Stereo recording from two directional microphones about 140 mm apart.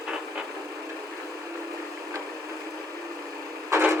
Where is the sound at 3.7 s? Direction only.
20° right (ahead or behind).